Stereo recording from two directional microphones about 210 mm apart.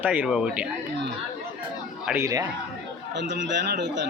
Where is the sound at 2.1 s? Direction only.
15° right (ahead or behind).